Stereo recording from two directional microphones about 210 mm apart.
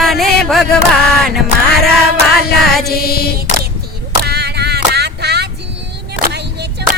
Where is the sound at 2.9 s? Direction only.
45° left (ahead or behind).